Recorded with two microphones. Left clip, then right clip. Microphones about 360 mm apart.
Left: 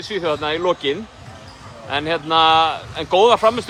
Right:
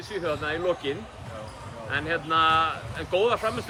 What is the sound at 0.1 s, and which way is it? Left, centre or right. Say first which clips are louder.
Speech: left 8 dB; centre.